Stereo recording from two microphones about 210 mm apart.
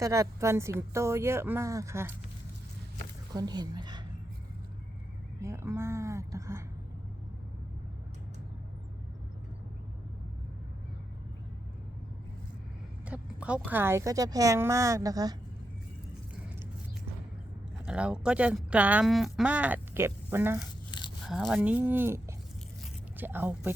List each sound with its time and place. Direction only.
0.0 s speech: 15° right (ahead or behind)
3.3 s a woman's voice: 20° right (ahead or behind)
5.4 s a sound: 15° right (ahead or behind)
13.1 s speech: 5° right (ahead or behind)
17.8 s speech: 5° right (ahead or behind)